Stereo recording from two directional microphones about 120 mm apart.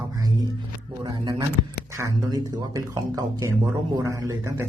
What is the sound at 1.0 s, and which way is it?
A woman's voice, 35° right (ahead or behind).